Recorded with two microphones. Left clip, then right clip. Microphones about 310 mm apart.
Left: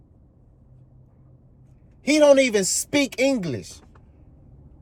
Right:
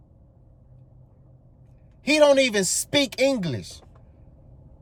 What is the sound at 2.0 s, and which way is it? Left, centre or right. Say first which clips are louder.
Speech: left 2 dB; centre.